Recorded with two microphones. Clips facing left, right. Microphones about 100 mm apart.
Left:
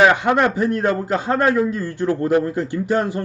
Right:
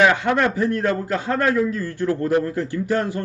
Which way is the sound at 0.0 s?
20° left (ahead or behind).